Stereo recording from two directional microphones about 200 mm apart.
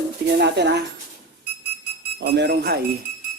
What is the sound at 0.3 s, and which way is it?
Speech, 55° right (ahead or behind).